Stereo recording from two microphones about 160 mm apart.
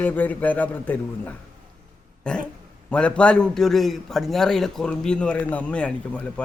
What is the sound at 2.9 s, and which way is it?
A man's voice, 5° left (ahead or behind).